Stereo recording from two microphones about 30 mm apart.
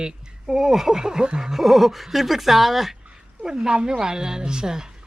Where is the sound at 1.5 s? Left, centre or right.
Centre.